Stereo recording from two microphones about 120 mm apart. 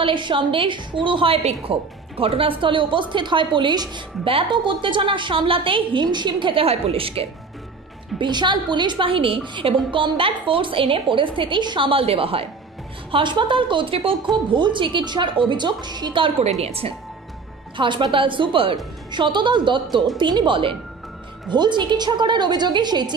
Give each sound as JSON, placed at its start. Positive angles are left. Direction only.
{"t": 0.0, "sound": "a woman's voice", "side_deg": -45}
{"t": 8.2, "sound": "a woman's voice", "side_deg": -40}
{"t": 16.4, "sound": "a woman's voice", "side_deg": -60}
{"t": 17.7, "sound": "a woman's voice", "side_deg": -40}